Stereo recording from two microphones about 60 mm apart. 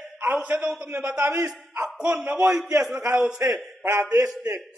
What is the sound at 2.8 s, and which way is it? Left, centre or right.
A man's voice, centre.